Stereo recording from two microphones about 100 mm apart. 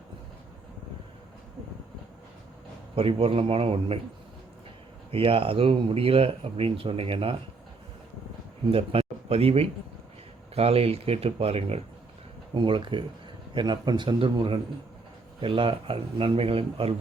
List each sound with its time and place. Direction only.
2.9 s speech: 70° right (ahead or behind)
5.1 s speech: 65° right (ahead or behind)
8.7 s speech: 75° right (ahead or behind)
12.5 s a man's voice: 55° right (ahead or behind)